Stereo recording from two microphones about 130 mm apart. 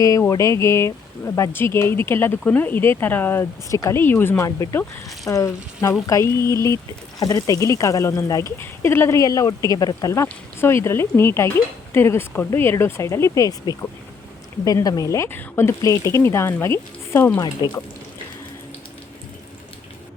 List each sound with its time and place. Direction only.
0.0 s speech: 25° left (ahead or behind)